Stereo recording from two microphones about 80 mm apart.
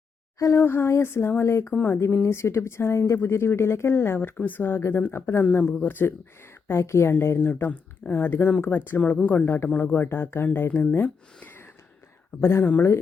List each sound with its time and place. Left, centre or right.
0.3 s speech: left
0.6 s speech: left
11.3 s a sound: left
12.4 s speech: left